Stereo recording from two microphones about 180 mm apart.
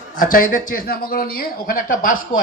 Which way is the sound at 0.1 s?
50° left (ahead or behind).